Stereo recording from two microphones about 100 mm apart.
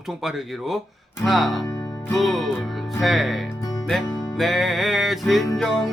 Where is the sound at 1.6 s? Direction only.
35° left (ahead or behind).